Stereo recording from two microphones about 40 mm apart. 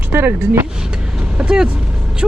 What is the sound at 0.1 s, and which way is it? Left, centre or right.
Speech, right.